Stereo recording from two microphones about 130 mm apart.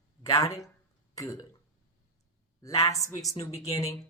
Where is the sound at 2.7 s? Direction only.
50° left (ahead or behind).